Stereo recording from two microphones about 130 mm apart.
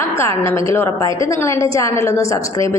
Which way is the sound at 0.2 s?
20° left (ahead or behind).